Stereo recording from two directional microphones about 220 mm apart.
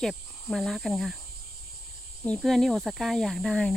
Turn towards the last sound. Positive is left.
turn(degrees=0)  # may be behind; listen again after turning